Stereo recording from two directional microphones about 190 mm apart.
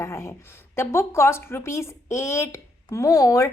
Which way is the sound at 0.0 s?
15° left (ahead or behind).